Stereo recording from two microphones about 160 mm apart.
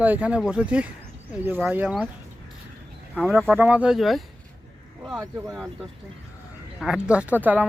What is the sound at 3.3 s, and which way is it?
Speech, 10° right (ahead or behind).